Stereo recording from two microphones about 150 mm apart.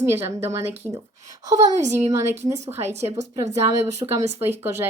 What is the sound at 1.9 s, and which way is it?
Speech, 20° right (ahead or behind).